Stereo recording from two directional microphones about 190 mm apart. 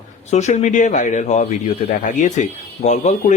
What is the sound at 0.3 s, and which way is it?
A man's voice, 35° left (ahead or behind).